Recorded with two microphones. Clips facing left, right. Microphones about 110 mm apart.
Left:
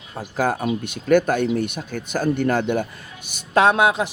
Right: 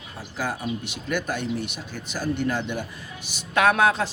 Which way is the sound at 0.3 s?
55° left (ahead or behind).